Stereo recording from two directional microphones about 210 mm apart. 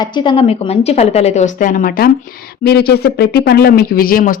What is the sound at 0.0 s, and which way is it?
Speech, 20° left (ahead or behind).